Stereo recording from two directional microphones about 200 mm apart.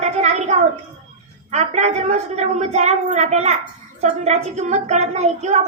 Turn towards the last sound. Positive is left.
turn(degrees=-35)  # may be behind; listen again after turning